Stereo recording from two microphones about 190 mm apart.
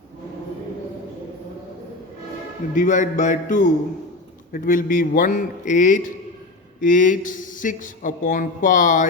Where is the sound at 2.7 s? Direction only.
40° left (ahead or behind).